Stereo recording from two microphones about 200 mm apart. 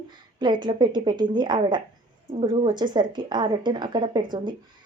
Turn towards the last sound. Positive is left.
turn(degrees=-20)  # may be behind; listen again after turning